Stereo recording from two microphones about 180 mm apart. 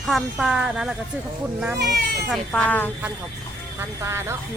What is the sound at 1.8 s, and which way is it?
Speech, 65° right (ahead or behind).